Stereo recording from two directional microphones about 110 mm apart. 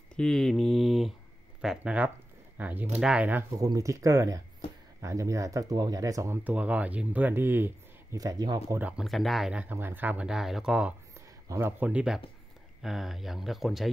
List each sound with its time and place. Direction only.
0.1 s a sound: 5° left (ahead or behind)
1.6 s speech: 5° right (ahead or behind)
3.6 s speech: 30° right (ahead or behind)
6.4 s speech: 10° right (ahead or behind)
8.2 s speech: 35° right (ahead or behind)
8.7 s speech: 15° right (ahead or behind)
9.0 s speech: centre (ahead or behind)
9.5 s speech: 15° right (ahead or behind)
11.1 s a sound: 25° right (ahead or behind)
11.8 s speech: 10° right (ahead or behind)